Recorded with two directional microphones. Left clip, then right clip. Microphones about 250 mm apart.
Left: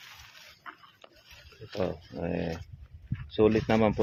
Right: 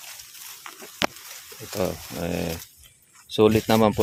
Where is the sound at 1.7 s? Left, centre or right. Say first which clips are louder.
Right 5 dB; right.